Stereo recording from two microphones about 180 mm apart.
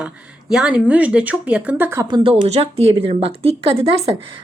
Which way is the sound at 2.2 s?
30° right (ahead or behind).